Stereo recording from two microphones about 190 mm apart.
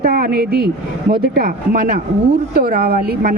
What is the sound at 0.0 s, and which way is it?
A woman's voice, 50° right (ahead or behind).